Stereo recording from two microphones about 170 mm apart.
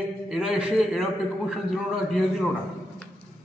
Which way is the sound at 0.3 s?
5° right (ahead or behind).